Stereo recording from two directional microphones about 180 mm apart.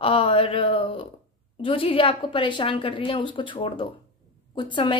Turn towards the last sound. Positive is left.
turn(degrees=25)  # may be behind; listen again after turning